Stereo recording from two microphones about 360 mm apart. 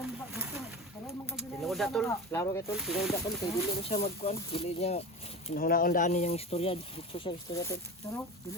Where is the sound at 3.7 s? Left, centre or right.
Centre.